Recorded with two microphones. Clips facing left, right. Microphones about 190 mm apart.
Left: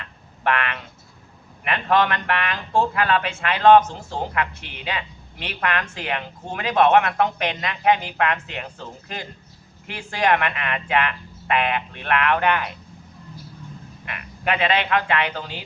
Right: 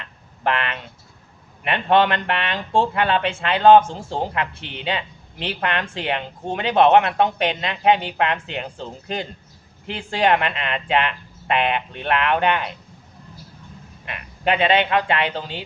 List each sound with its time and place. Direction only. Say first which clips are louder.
0.0 s a sound: right 1 dB; 30° right (ahead or behind)
1.6 s speech: right 3 dB; 30° right (ahead or behind)
14.0 s speech: right 4 dB; 25° right (ahead or behind)